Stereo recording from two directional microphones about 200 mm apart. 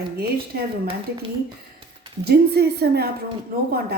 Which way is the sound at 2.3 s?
55° right (ahead or behind).